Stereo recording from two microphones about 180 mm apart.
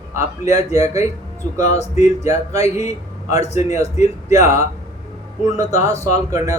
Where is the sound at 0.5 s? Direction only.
15° right (ahead or behind).